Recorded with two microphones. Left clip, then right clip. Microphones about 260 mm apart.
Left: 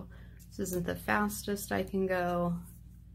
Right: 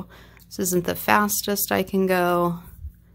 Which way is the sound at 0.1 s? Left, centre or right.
Right.